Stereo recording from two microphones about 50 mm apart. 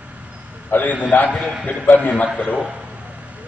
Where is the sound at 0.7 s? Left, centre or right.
Left.